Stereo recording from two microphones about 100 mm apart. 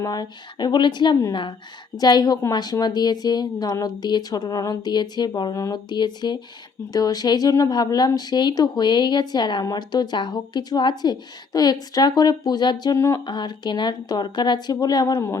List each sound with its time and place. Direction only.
0.0 s a woman's voice: 40° left (ahead or behind)
2.0 s a woman's voice: 40° left (ahead or behind)
13.1 s speech: 50° left (ahead or behind); by 15.4 s 30° left (ahead or behind)